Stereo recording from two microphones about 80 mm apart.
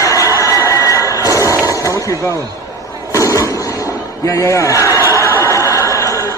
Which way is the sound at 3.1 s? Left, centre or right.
Left.